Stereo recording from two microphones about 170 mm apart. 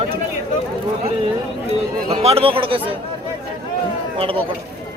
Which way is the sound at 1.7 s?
35° right (ahead or behind).